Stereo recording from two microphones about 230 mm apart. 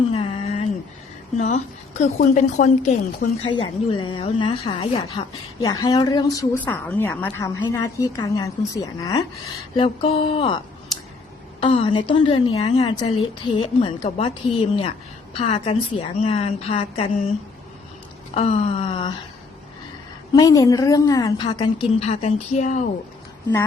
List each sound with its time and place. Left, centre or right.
0.1 s a sound: left
2.0 s a woman's voice: left
3.5 s a woman's voice: left
11.6 s a woman's voice: left
18.3 s a woman's voice: left
20.3 s a woman's voice: centre; by 22.8 s left